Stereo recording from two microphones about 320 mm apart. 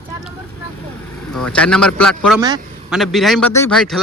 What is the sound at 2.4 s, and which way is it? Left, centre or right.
Speech, centre.